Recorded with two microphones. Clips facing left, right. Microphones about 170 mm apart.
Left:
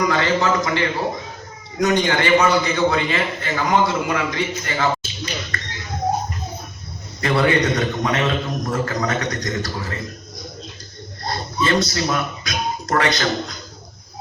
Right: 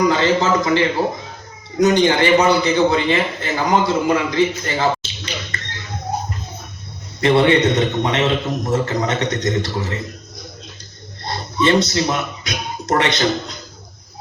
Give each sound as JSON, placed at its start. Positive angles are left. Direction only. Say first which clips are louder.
{"t": 0.1, "sound": "a man's voice", "louder": "right 3 dB", "side_deg": -30}
{"t": 7.2, "sound": "a man's voice", "louder": "right 4 dB", "side_deg": -25}
{"t": 11.2, "sound": "speech", "louder": "right 3 dB", "side_deg": -25}